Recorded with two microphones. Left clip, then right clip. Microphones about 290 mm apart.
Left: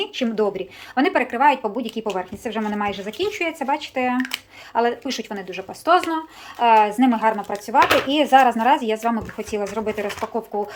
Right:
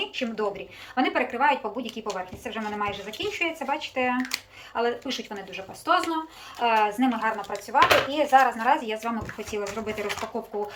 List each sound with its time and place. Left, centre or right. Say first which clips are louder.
0.0 s speech: left 6 dB; left